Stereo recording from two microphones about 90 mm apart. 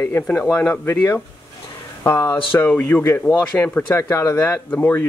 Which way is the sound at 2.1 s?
40° left (ahead or behind).